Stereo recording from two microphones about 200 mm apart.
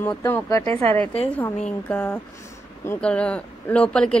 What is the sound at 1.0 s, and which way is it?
A woman's voice, 5° left (ahead or behind).